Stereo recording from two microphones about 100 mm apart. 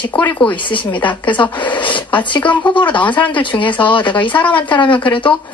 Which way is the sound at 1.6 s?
55° left (ahead or behind).